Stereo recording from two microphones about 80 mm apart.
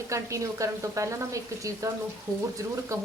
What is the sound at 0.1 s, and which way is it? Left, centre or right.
A woman's voice, right.